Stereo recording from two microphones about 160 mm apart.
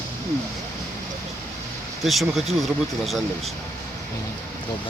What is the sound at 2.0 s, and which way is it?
Speech, centre (ahead or behind).